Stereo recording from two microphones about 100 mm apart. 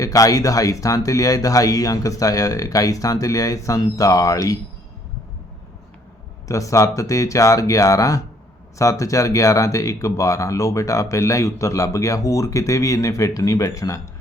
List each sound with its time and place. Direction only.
0.0 s speech: 35° left (ahead or behind)
6.5 s speech: 35° left (ahead or behind)